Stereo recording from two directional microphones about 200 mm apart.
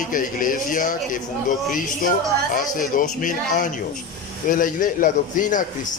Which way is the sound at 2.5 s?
45° left (ahead or behind).